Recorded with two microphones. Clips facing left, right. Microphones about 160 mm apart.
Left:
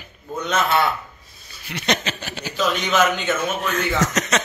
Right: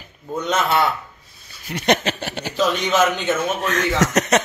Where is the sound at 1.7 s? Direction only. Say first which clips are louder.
Right 5 dB; 50° right (ahead or behind).